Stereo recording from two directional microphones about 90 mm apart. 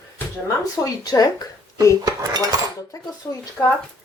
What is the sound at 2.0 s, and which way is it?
Dishes, 45° right (ahead or behind).